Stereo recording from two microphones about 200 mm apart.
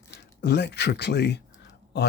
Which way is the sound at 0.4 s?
55° left (ahead or behind).